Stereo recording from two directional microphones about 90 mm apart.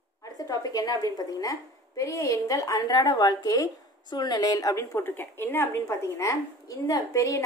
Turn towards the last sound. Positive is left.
turn(degrees=35)  # may be behind; listen again after turning